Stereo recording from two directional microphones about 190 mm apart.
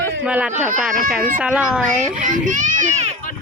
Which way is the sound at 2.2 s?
40° right (ahead or behind).